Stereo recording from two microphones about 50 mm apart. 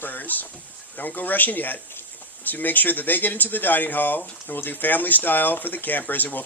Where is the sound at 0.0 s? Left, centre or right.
Left.